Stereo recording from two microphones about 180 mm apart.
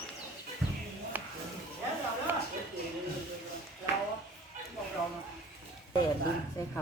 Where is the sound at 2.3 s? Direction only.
15° right (ahead or behind).